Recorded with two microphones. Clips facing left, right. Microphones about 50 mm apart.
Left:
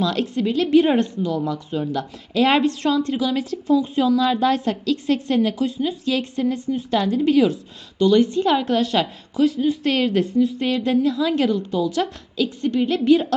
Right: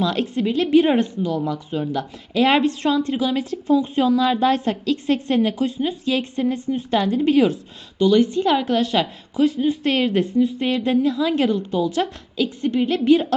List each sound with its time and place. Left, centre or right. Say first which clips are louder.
0.0 s speech: even; centre
3.2 s speech: even; right
4.2 s speech: right 1 dB; centre
8.1 s a woman's voice: even; centre
11.7 s speech: even; right
12.8 s speech: even; centre